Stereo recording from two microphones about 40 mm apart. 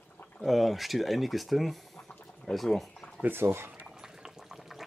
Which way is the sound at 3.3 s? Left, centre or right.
Right.